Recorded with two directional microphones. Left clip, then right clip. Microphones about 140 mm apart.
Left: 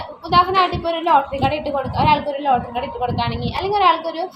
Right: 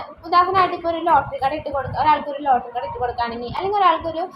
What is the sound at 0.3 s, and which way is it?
A woman's voice, 10° left (ahead or behind).